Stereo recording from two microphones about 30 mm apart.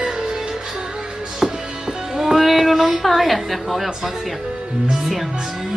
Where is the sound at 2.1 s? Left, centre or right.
Centre.